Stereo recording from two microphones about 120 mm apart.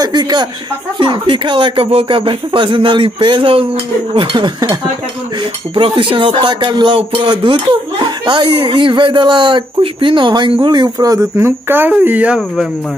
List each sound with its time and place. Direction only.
0.0 s speech: 35° right (ahead or behind)
5.8 s speech: 45° right (ahead or behind); by 12.4 s 15° right (ahead or behind)